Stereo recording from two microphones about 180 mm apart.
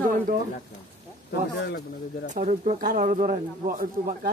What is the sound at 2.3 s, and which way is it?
Speech, 45° right (ahead or behind).